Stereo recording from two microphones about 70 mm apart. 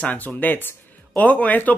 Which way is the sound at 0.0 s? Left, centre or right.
Left.